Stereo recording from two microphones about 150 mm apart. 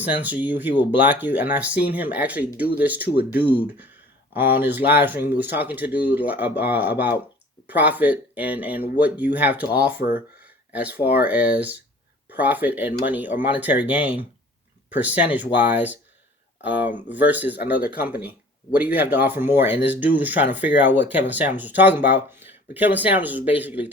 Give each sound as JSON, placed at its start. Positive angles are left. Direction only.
{"t": 0.0, "sound": "speech", "side_deg": -10}
{"t": 10.4, "sound": "a sound", "side_deg": -10}
{"t": 11.2, "sound": "speech", "side_deg": -10}